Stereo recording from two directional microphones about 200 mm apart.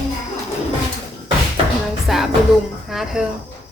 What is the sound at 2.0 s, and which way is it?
Music, centre (ahead or behind).